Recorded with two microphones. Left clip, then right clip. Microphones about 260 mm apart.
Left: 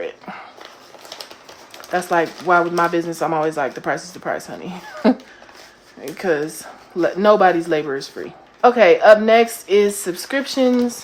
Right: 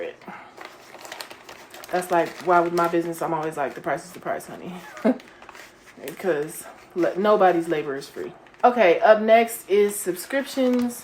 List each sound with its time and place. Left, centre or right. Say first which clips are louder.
1.9 s speech: left 4 dB; left